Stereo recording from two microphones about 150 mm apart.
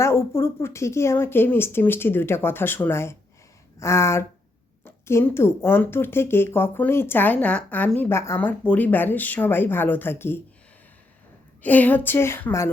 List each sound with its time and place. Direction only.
0.0 s a woman's voice: 15° left (ahead or behind)
11.6 s a woman's voice: 10° left (ahead or behind)